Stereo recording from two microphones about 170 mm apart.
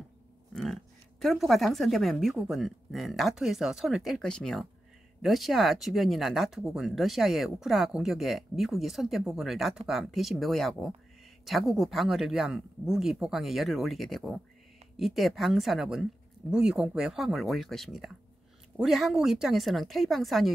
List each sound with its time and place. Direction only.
1.2 s speech: centre (ahead or behind)